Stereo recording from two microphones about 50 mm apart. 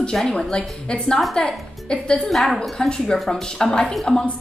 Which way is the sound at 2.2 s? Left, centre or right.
Centre.